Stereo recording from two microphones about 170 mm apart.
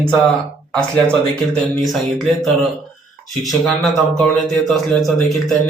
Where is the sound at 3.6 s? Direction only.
Centre (ahead or behind).